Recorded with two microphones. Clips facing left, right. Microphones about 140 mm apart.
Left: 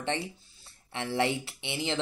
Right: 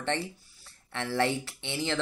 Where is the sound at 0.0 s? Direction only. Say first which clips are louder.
Right 1 dB; 15° left (ahead or behind).